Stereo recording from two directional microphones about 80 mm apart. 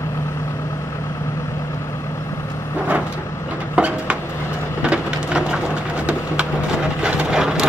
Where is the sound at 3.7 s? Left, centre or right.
Centre.